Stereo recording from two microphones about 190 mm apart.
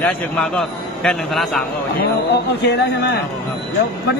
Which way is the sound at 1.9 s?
60° left (ahead or behind).